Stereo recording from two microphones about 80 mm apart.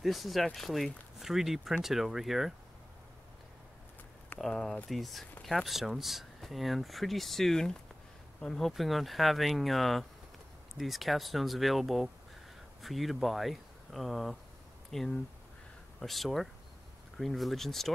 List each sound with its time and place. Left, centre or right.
0.0 s speech: centre
4.4 s speech: centre